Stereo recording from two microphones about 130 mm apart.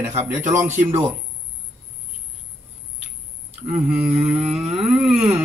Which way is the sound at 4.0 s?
50° right (ahead or behind).